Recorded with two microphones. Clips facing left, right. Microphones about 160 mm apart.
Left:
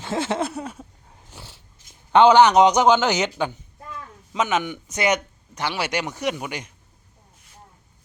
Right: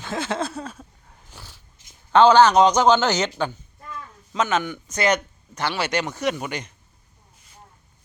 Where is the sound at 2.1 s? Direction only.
15° left (ahead or behind).